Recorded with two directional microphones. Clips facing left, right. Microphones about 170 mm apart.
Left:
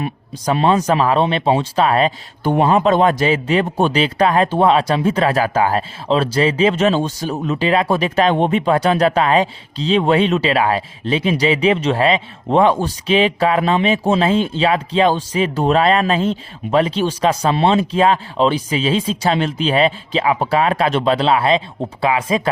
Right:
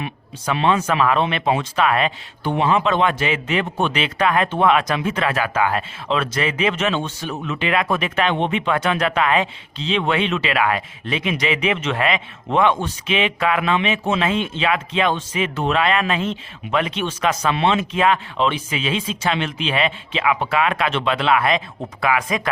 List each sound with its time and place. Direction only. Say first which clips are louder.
0.0 s speech: left 5 dB; 35° left (ahead or behind)